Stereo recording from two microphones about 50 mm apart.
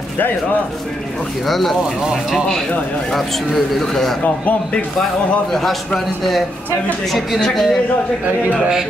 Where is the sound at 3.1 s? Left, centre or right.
Centre.